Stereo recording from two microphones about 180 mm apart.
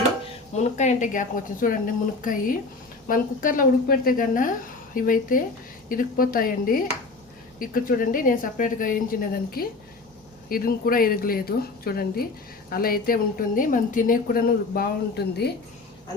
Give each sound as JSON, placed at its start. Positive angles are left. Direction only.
{"t": 0.5, "sound": "a woman's voice", "side_deg": 40}